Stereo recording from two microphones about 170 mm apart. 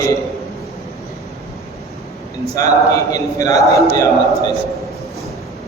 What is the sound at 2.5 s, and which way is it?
A man's voice, 20° left (ahead or behind).